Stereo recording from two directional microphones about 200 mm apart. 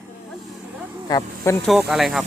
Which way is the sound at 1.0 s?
20° left (ahead or behind).